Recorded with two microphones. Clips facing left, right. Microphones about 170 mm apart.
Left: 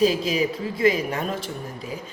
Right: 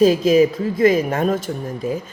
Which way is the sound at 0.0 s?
45° right (ahead or behind).